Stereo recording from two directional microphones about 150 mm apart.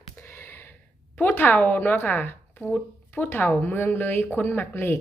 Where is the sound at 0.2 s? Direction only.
15° left (ahead or behind).